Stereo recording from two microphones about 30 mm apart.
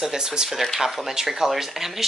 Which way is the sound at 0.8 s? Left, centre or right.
Centre.